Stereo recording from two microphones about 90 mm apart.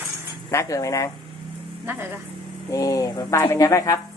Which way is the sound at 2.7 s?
40° left (ahead or behind).